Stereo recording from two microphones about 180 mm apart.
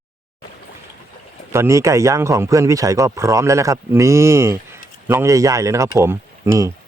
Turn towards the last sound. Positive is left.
turn(degrees=-15)  # may be behind; listen again after turning